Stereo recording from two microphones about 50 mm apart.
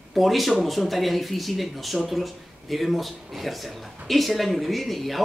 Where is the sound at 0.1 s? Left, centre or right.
Centre.